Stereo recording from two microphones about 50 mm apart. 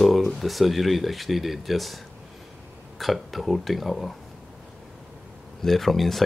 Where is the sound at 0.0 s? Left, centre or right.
Centre.